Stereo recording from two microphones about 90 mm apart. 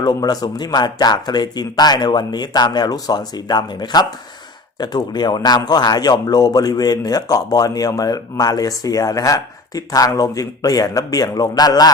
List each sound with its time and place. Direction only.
0.0 s speech: 45° left (ahead or behind)